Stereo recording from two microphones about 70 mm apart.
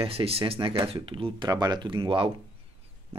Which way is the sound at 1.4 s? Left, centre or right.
Right.